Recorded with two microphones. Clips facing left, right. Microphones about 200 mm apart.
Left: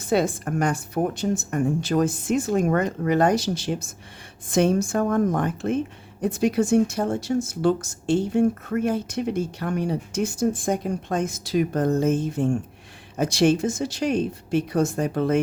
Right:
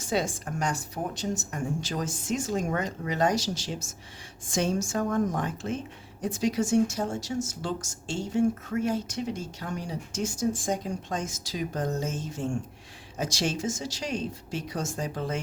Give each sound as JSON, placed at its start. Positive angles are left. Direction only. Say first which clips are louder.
{"t": 0.0, "sound": "speech", "louder": "left 7 dB", "side_deg": 55}